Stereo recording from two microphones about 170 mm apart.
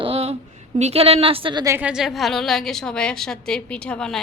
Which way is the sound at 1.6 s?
15° right (ahead or behind).